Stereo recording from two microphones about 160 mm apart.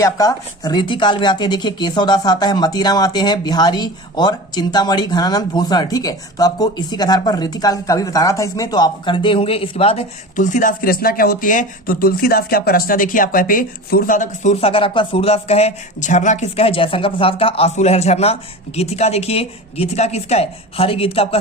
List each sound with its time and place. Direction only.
0.0 s speech: 20° left (ahead or behind)
10.3 s a woman's voice: 55° left (ahead or behind); by 21.3 s 35° left (ahead or behind)